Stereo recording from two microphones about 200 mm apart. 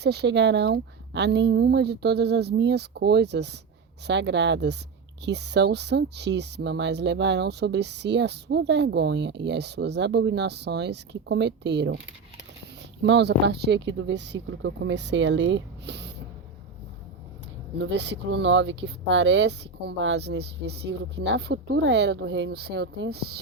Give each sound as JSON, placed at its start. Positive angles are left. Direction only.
{"t": 0.0, "sound": "speech", "side_deg": -55}
{"t": 13.0, "sound": "speech", "side_deg": -60}
{"t": 17.7, "sound": "speech", "side_deg": -65}